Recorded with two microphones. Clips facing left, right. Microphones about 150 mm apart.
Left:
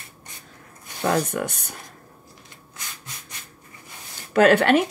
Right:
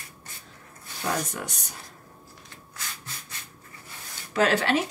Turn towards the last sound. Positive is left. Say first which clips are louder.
# left 7 dB
turn(degrees=60)  # may be behind; listen again after turning